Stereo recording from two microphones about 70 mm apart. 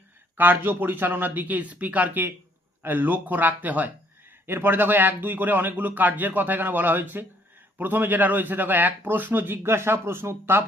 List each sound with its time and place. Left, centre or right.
0.3 s a man's voice: right